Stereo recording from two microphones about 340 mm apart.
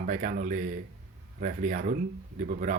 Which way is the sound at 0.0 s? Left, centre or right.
Right.